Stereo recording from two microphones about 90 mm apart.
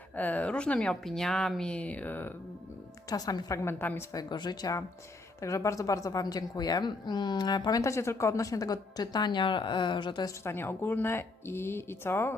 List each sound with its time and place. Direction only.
0.2 s speech: 20° left (ahead or behind)
3.1 s a woman's voice: 45° left (ahead or behind); by 4.0 s 25° left (ahead or behind)
4.1 s a woman's voice: 50° left (ahead or behind)
5.4 s a woman's voice: 35° left (ahead or behind)
7.8 s a woman's voice: 35° left (ahead or behind); by 10.2 s 60° left (ahead or behind)
10.4 s speech: 25° left (ahead or behind)